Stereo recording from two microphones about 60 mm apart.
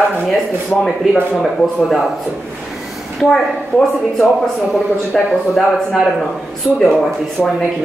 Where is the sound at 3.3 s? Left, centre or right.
Centre.